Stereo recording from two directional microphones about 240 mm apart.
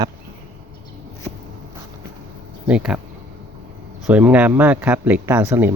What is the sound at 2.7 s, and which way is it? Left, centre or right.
Speech, centre.